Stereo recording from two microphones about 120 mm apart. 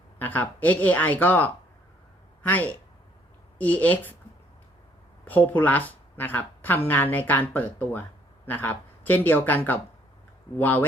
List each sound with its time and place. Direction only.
0.2 s speech: 15° left (ahead or behind)
5.2 s speech: 15° left (ahead or behind)